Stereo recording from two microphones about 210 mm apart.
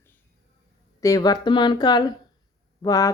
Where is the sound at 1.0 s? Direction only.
15° left (ahead or behind).